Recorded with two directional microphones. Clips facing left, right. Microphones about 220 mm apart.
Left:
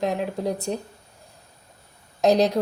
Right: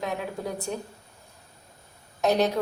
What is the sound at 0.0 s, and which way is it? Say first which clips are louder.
Speech: left 6 dB; 35° left (ahead or behind).